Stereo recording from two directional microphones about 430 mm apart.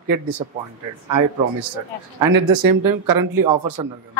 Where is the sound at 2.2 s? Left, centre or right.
Right.